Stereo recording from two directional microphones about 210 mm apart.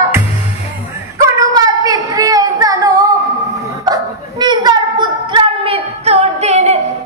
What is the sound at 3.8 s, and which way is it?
Dog, 20° right (ahead or behind).